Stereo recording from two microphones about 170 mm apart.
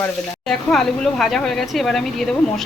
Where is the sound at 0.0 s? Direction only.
5° left (ahead or behind).